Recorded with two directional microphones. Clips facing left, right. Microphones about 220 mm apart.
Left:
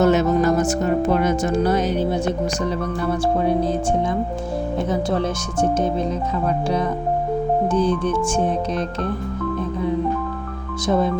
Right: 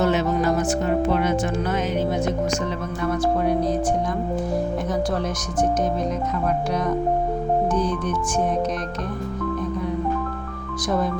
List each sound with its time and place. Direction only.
0.0 s speech: 45° left (ahead or behind); by 3.7 s 30° left (ahead or behind)
7.7 s speech: 30° left (ahead or behind)
10.8 s speech: 25° left (ahead or behind)